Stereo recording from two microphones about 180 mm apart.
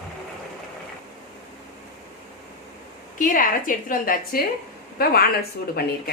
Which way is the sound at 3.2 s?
50° left (ahead or behind).